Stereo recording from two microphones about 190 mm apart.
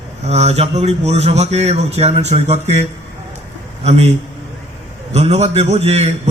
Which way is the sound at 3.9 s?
35° right (ahead or behind).